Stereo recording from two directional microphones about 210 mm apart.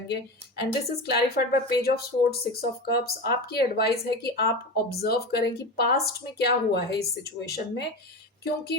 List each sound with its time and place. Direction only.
0.1 s speech: 50° left (ahead or behind)